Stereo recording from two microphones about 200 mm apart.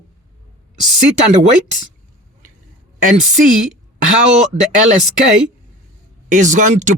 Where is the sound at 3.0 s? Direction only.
40° right (ahead or behind).